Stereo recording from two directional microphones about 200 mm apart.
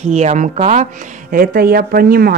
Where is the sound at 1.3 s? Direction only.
45° right (ahead or behind).